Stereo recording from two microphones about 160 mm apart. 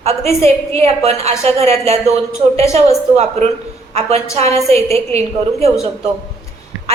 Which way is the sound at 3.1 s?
45° right (ahead or behind).